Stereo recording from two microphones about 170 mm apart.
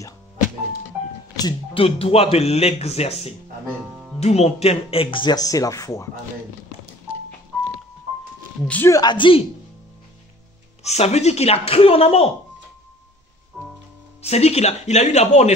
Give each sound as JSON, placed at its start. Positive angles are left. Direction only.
{"t": 1.3, "sound": "speech", "side_deg": 25}
{"t": 8.6, "sound": "speech", "side_deg": 10}
{"t": 8.9, "sound": "speech", "side_deg": 25}
{"t": 10.8, "sound": "speech", "side_deg": 40}
{"t": 13.5, "sound": "music", "side_deg": -10}
{"t": 14.2, "sound": "speech", "side_deg": 40}